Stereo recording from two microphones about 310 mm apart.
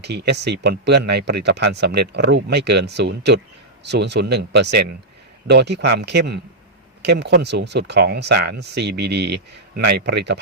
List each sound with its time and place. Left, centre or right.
0.0 s speech: right